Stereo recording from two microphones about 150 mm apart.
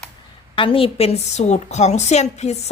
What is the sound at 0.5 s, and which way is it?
A woman's voice, 35° left (ahead or behind).